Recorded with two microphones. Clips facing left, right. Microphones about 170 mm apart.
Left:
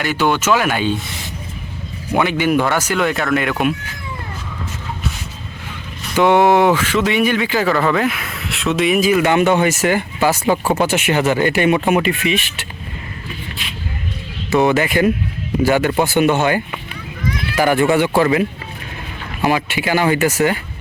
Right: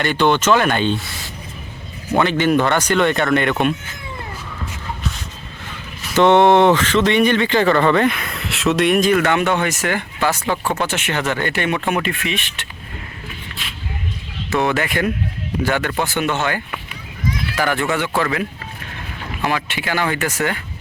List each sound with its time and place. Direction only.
0.0 s speech: 5° left (ahead or behind)
2.1 s speech: 10° left (ahead or behind)
6.1 s speech: 5° left (ahead or behind)
14.5 s speech: 5° left (ahead or behind)